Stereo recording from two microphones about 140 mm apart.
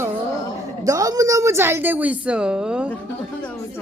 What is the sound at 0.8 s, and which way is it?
A woman's voice, 25° right (ahead or behind).